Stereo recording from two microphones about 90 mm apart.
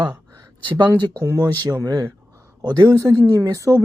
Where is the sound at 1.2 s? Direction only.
35° right (ahead or behind).